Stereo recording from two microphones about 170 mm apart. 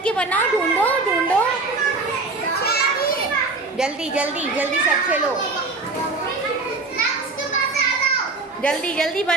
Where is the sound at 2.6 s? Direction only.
65° left (ahead or behind).